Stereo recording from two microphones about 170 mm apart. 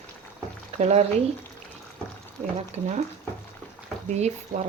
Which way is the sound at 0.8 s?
40° right (ahead or behind).